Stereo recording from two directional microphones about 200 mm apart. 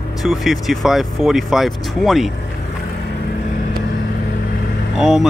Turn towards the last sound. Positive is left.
turn(degrees=-5)  # may be behind; listen again after turning